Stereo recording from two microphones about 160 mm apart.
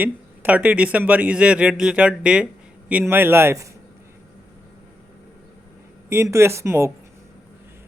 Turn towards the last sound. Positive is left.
turn(degrees=-15)  # may be behind; listen again after turning